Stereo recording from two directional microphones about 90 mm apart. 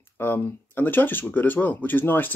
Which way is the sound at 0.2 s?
25° left (ahead or behind).